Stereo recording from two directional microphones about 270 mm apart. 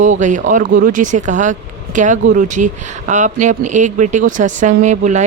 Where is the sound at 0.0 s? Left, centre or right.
Right.